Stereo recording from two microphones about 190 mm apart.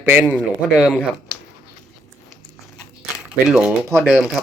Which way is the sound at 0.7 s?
Centre (ahead or behind).